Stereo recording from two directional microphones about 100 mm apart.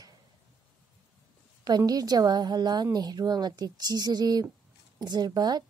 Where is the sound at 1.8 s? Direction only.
40° right (ahead or behind).